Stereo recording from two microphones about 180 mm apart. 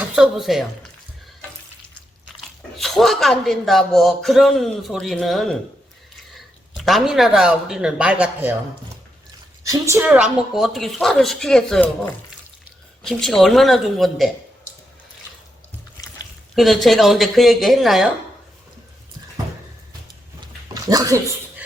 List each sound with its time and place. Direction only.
0.0 s a man's voice: 5° right (ahead or behind)
2.7 s a man's voice: centre (ahead or behind)
6.7 s a man's voice: centre (ahead or behind)
9.6 s a man's voice: 15° right (ahead or behind); by 11.9 s 5° left (ahead or behind)
13.0 s a man's voice: 5° left (ahead or behind)
16.6 s a man's voice: centre (ahead or behind)
20.9 s speech: 20° right (ahead or behind)